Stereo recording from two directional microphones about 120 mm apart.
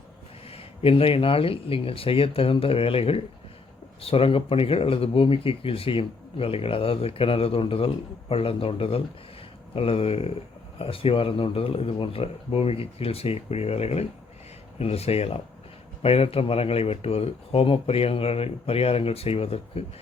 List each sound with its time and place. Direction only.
0.4 s speech: 55° left (ahead or behind)